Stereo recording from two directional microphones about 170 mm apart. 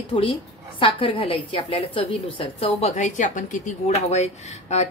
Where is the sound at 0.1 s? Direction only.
35° left (ahead or behind).